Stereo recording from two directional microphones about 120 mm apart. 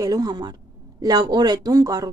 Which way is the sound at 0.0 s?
35° right (ahead or behind).